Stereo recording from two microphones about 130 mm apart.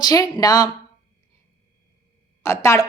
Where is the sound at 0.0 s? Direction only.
30° left (ahead or behind).